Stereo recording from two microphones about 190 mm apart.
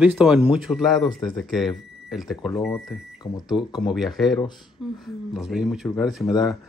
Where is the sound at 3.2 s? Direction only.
20° left (ahead or behind).